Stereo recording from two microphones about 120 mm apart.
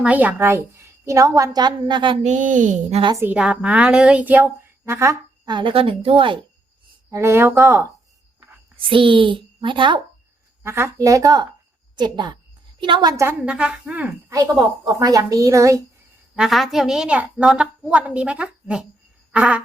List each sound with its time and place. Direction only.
0.0 s a woman's voice: 15° right (ahead or behind); by 2.1 s 40° right (ahead or behind)
2.2 s speech: 90° right
3.2 s a woman's voice: 15° right (ahead or behind)
5.5 s a woman's voice: 45° right (ahead or behind)
7.1 s a woman's voice: 20° right (ahead or behind)
8.9 s a woman's voice: 45° right (ahead or behind)
10.6 s a woman's voice: 20° right (ahead or behind)
13.2 s a woman's voice: 10° right (ahead or behind)
14.3 s a woman's voice: 25° right (ahead or behind)
16.3 s a woman's voice: 5° right (ahead or behind)
19.3 s a sound: 10° right (ahead or behind)